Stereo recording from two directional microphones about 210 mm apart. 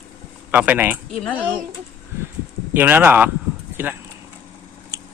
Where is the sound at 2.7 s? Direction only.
10° right (ahead or behind).